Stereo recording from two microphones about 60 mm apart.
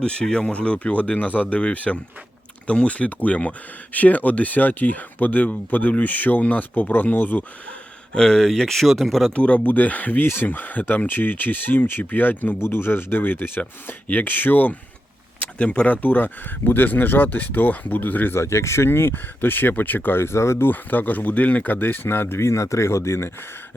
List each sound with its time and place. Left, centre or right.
0.0 s speech: centre
7.7 s speech: centre
9.3 s speech: left
12.5 s speech: left
15.4 s speech: left
16.0 s speech: left
18.3 s speech: left
20.7 s speech: left